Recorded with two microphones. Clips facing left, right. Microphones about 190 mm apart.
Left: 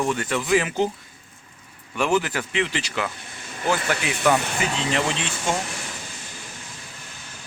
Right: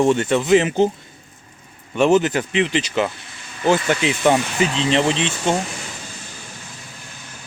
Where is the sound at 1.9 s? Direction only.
25° right (ahead or behind).